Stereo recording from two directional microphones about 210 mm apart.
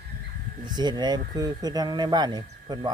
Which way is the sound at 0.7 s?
20° right (ahead or behind).